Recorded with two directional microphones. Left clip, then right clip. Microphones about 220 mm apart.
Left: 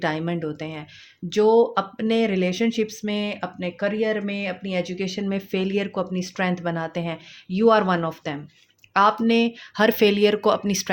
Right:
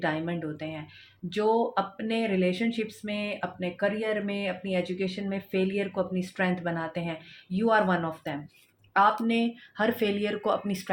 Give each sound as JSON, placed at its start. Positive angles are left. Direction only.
{"t": 0.0, "sound": "speech", "side_deg": 50}